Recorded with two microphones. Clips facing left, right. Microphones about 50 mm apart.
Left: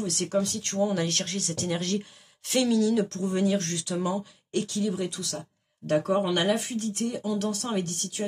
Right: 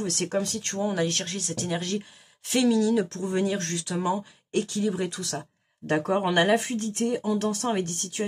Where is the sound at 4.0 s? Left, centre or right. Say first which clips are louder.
Right 2 dB; right.